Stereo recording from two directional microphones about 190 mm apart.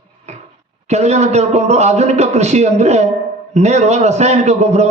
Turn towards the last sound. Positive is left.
turn(degrees=-35)  # may be behind; listen again after turning